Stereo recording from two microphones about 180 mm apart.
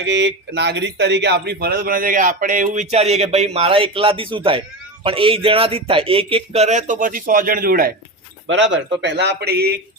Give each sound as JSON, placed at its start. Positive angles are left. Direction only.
{"t": 0.0, "sound": "speech", "side_deg": -85}
{"t": 8.4, "sound": "speech", "side_deg": -90}